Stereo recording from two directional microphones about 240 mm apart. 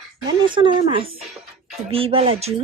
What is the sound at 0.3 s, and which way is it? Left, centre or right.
A child's voice, centre.